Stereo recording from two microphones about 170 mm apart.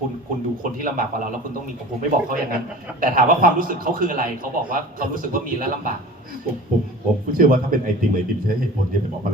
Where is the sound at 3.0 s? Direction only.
55° right (ahead or behind).